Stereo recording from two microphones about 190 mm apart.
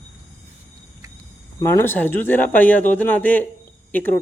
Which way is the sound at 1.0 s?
15° right (ahead or behind).